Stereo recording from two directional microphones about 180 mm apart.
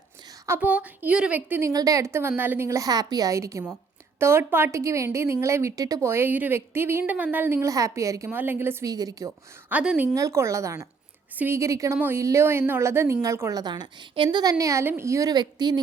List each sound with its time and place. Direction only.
0.4 s a woman's voice: 10° right (ahead or behind)
10.2 s a woman's voice: 15° right (ahead or behind)